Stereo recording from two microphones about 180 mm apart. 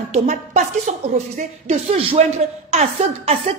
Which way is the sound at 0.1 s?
40° right (ahead or behind).